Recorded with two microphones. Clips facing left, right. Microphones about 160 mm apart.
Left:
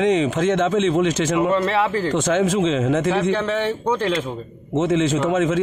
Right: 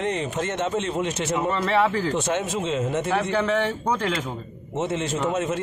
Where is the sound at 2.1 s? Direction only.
90° left.